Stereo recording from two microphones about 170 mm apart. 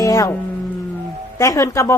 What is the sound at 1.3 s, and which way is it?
Speech, 20° left (ahead or behind).